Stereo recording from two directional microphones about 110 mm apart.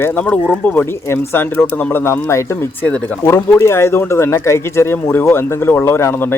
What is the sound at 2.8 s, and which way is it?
Speech, 15° left (ahead or behind).